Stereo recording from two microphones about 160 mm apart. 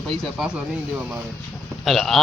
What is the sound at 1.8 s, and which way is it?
Speech, centre (ahead or behind).